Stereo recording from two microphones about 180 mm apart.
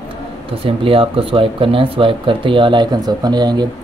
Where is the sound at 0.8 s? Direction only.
30° right (ahead or behind).